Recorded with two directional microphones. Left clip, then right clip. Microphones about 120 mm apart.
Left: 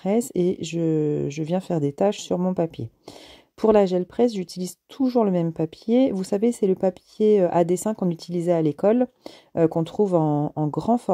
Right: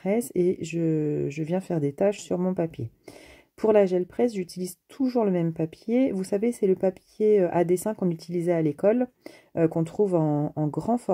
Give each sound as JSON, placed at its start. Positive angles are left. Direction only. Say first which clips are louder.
{"t": 0.0, "sound": "speech", "louder": "left 2 dB", "side_deg": 35}